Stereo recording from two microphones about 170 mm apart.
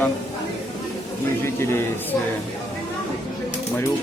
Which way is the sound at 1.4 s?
15° left (ahead or behind).